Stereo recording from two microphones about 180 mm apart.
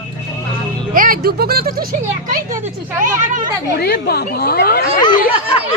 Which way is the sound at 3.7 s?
60° left (ahead or behind).